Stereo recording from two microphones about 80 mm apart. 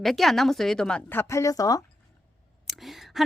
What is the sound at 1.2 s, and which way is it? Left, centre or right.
Speech, left.